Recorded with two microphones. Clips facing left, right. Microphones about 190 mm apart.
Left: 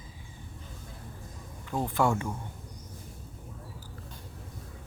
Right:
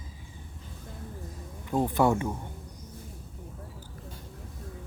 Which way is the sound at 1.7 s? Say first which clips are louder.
Right 3 dB; 15° right (ahead or behind).